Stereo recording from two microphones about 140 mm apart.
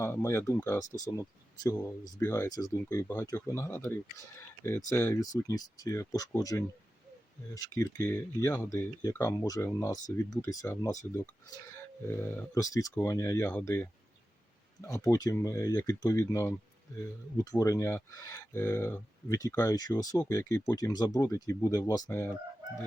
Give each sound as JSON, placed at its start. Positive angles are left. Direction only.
{"t": 0.0, "sound": "speech", "side_deg": 20}
{"t": 14.8, "sound": "speech", "side_deg": 25}